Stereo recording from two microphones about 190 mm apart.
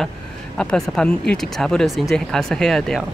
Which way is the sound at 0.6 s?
5° left (ahead or behind).